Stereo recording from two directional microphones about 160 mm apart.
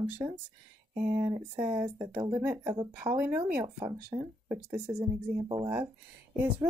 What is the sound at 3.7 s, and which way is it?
Speech, 30° right (ahead or behind).